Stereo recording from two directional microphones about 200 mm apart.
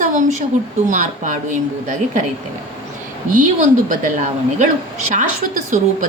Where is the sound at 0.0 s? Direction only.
40° right (ahead or behind).